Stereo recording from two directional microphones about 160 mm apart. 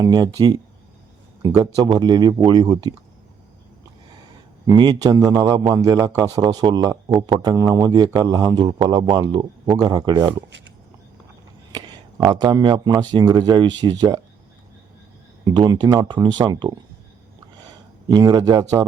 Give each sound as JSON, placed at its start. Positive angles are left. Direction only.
{"t": 0.0, "sound": "a man's voice", "side_deg": -25}
{"t": 4.6, "sound": "a man's voice", "side_deg": -25}
{"t": 11.7, "sound": "a man's voice", "side_deg": -25}
{"t": 15.4, "sound": "a man's voice", "side_deg": -25}
{"t": 18.1, "sound": "a man's voice", "side_deg": -25}